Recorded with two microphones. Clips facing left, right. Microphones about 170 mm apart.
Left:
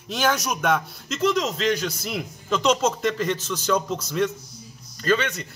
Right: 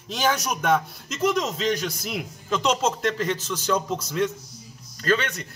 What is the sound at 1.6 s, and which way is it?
A man's voice, centre (ahead or behind).